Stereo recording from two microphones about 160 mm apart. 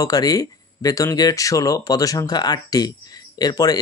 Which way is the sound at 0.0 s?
25° left (ahead or behind).